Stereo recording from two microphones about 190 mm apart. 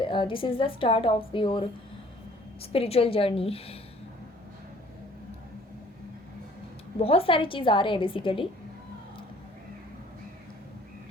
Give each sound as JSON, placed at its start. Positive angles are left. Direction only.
{"t": 0.0, "sound": "a woman's voice", "side_deg": 25}
{"t": 7.0, "sound": "a woman's voice", "side_deg": 30}